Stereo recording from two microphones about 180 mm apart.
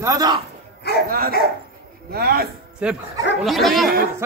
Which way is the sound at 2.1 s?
60° right (ahead or behind).